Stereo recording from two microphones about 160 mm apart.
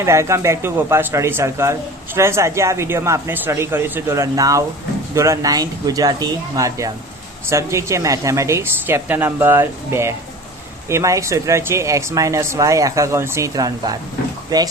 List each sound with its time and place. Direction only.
0.0 s speech: 15° right (ahead or behind)